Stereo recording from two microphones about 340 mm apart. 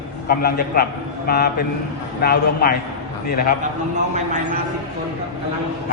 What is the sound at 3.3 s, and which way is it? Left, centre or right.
Speech, left.